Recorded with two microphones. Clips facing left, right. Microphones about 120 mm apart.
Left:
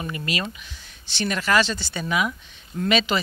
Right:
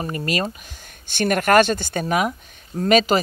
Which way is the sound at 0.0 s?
40° right (ahead or behind).